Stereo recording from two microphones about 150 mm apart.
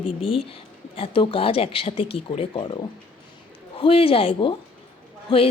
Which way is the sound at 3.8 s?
35° left (ahead or behind).